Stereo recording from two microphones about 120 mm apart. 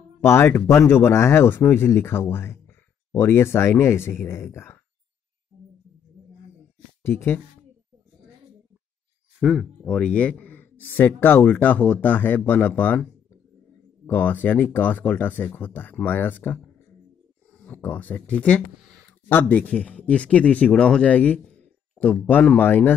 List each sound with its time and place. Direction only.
0.2 s speech: 20° left (ahead or behind)
7.0 s speech: 20° left (ahead or behind)
9.4 s speech: centre (ahead or behind)
9.8 s speech: 10° left (ahead or behind)
14.0 s speech: 15° left (ahead or behind)
17.6 s speech: 15° left (ahead or behind)